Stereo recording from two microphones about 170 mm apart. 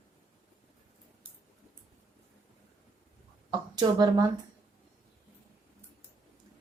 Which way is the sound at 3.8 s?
25° right (ahead or behind).